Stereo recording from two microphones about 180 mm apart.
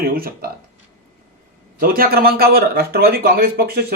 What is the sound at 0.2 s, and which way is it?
Speech, 55° right (ahead or behind).